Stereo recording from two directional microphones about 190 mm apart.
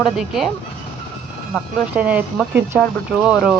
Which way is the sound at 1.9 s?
5° right (ahead or behind).